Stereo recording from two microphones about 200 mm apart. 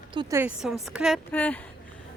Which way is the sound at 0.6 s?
Centre (ahead or behind).